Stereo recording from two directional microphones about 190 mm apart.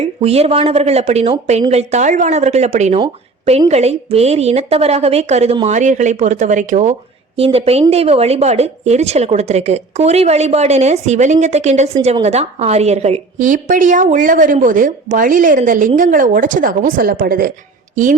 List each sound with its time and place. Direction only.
0.0 s a woman's voice: 35° right (ahead or behind)